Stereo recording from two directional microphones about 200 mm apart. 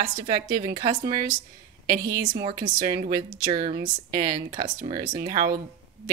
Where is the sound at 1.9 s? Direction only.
45° right (ahead or behind).